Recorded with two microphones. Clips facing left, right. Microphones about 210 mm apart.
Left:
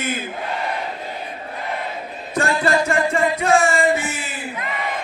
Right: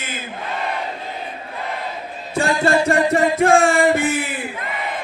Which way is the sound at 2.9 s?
35° right (ahead or behind).